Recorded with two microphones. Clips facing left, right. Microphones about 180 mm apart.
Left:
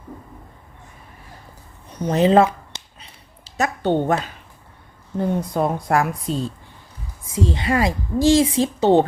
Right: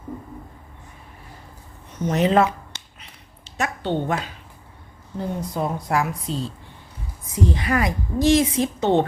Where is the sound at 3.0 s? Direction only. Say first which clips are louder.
Left 1 dB; 35° left (ahead or behind).